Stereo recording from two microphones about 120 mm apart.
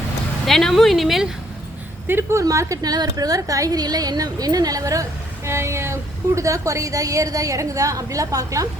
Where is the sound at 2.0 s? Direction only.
20° right (ahead or behind).